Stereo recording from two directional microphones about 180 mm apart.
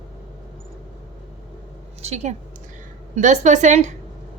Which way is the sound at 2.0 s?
40° right (ahead or behind).